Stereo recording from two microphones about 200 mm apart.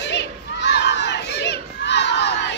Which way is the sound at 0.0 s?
60° left (ahead or behind).